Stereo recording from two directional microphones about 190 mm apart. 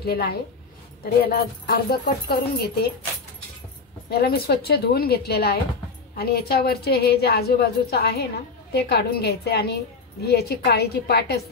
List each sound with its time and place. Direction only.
0.0 s a woman's voice: 55° left (ahead or behind)
4.1 s a woman's voice: 55° left (ahead or behind)